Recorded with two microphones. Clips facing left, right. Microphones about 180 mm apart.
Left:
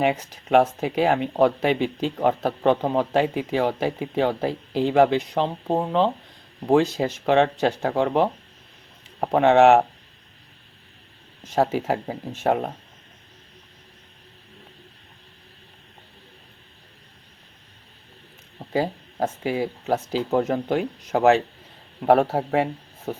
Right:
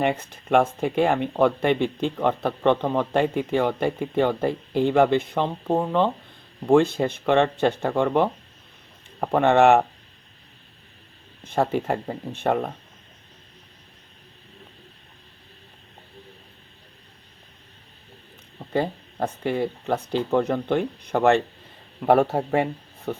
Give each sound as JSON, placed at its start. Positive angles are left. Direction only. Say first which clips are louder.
{"t": 0.0, "sound": "speech", "louder": "left 1 dB", "side_deg": 5}
{"t": 11.4, "sound": "speech", "louder": "left 1 dB", "side_deg": 5}
{"t": 18.6, "sound": "speech", "louder": "even", "side_deg": 5}